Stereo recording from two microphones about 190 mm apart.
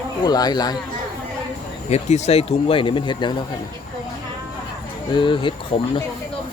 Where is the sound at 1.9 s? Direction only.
35° left (ahead or behind).